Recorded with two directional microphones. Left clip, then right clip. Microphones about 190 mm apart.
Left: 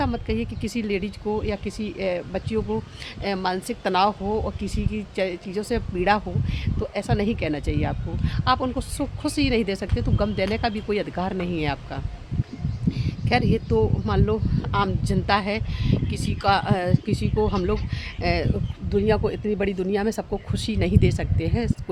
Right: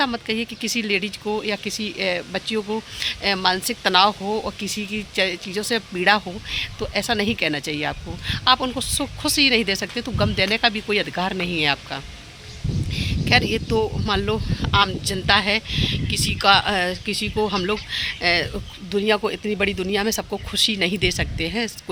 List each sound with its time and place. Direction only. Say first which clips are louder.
0.0 s speech: right 4 dB; 5° left (ahead or behind)
4.3 s speech: right 1 dB; 20° right (ahead or behind)
4.6 s speech: right 4 dB; 5° left (ahead or behind)